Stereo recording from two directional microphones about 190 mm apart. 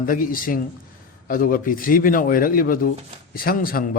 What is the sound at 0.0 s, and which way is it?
A man's voice, 45° left (ahead or behind).